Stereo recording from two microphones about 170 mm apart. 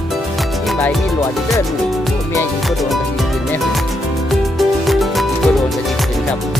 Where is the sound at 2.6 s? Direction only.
Centre (ahead or behind).